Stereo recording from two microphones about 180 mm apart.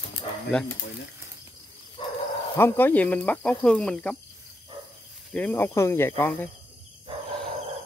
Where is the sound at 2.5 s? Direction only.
10° left (ahead or behind).